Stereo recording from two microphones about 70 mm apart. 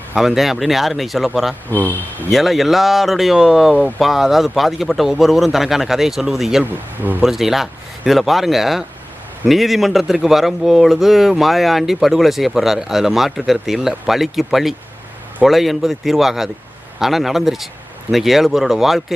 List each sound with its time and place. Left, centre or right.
0.2 s speech: centre
1.7 s speech: left
2.3 s speech: centre
6.7 s speech: right
7.2 s speech: centre